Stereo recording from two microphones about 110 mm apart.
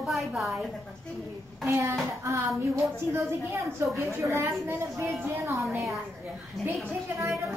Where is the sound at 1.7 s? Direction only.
30° right (ahead or behind).